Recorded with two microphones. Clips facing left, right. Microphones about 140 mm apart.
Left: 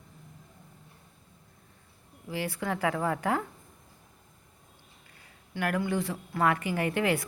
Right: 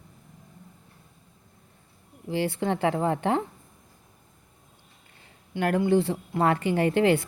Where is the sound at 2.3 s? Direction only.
30° right (ahead or behind).